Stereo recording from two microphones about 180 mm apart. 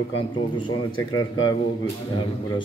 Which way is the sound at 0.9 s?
90° left.